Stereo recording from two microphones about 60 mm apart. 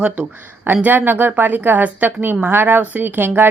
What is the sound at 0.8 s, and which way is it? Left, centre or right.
Speech, right.